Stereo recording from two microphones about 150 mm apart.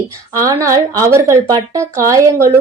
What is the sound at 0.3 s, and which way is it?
A woman's voice, 20° right (ahead or behind).